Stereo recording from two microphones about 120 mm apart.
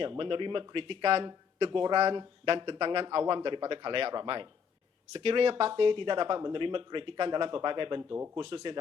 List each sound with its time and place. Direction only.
0.0 s speech: 45° right (ahead or behind)
5.2 s speech: 55° right (ahead or behind)